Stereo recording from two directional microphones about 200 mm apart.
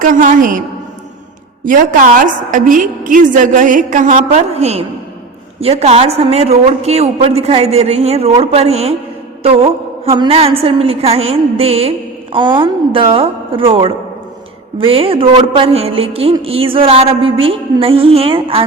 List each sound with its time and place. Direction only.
0.0 s a woman's voice: 40° right (ahead or behind)
1.6 s a woman's voice: 40° right (ahead or behind)
10.1 s a sound: 30° right (ahead or behind)